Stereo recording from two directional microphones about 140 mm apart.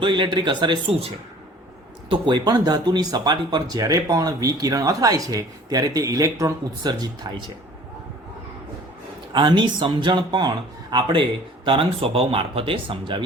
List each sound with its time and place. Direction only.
0.0 s speech: 35° right (ahead or behind)
9.3 s speech: 35° right (ahead or behind)